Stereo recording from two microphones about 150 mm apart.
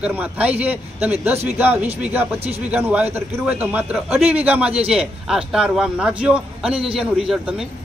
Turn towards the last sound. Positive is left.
turn(degrees=-5)  # may be behind; listen again after turning